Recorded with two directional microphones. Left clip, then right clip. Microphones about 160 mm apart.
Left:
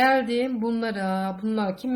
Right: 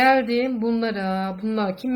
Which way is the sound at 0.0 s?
10° right (ahead or behind).